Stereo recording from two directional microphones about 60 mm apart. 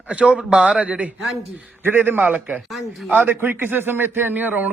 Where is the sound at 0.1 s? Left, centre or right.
Right.